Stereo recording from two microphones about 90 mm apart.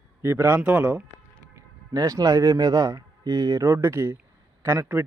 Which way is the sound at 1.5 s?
35° right (ahead or behind).